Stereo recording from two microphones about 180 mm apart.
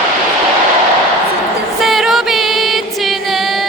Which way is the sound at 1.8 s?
Centre (ahead or behind).